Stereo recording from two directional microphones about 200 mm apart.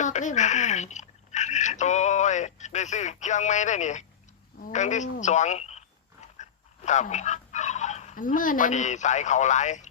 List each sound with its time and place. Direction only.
0.0 s speech: 40° left (ahead or behind)